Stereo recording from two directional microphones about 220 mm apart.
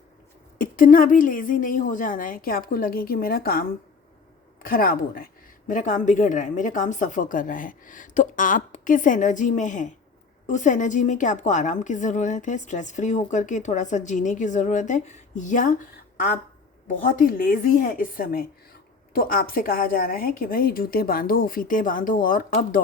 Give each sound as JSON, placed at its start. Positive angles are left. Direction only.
{"t": 0.6, "sound": "a woman's voice", "side_deg": 40}
{"t": 16.9, "sound": "a woman's voice", "side_deg": 40}